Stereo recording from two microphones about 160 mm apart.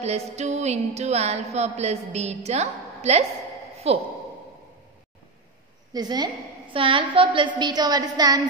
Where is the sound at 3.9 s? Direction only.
40° right (ahead or behind).